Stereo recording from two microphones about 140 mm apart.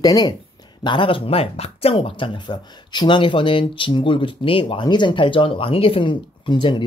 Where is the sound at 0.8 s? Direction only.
35° left (ahead or behind).